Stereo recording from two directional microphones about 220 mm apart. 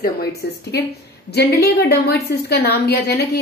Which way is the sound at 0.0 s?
45° left (ahead or behind).